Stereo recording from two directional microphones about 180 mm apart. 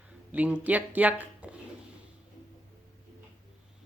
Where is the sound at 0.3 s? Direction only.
10° right (ahead or behind).